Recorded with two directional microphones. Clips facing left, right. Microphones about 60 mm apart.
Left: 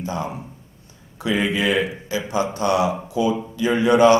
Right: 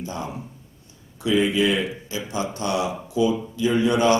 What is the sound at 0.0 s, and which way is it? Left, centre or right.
Speech, left.